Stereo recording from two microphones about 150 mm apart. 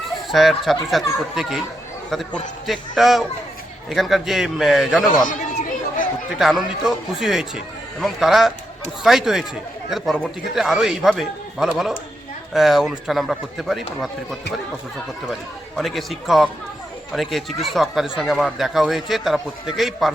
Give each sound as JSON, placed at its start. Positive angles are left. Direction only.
{"t": 0.3, "sound": "speech", "side_deg": 0}
{"t": 5.1, "sound": "chatter", "side_deg": 60}
{"t": 6.4, "sound": "speech", "side_deg": -5}
{"t": 15.8, "sound": "speech", "side_deg": 0}